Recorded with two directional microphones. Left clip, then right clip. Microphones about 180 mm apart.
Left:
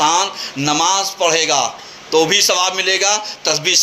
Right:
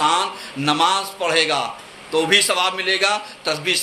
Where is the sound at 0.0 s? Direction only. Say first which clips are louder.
Left 3 dB; 15° left (ahead or behind).